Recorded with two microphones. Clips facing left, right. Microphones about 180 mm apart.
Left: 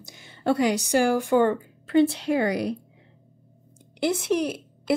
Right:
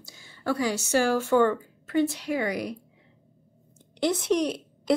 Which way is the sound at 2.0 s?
30° left (ahead or behind).